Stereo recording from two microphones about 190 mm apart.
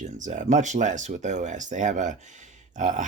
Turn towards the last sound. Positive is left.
turn(degrees=-40)  # may be behind; listen again after turning